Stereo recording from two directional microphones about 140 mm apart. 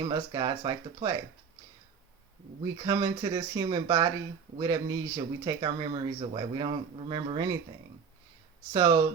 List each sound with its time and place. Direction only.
0.0 s speech: 30° right (ahead or behind)
2.7 s speech: 30° right (ahead or behind)
8.7 s speech: 25° right (ahead or behind)